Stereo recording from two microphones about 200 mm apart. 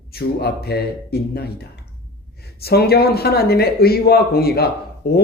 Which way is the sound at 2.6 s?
50° left (ahead or behind).